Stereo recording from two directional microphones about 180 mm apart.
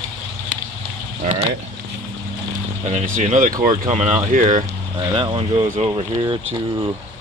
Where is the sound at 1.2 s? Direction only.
35° right (ahead or behind).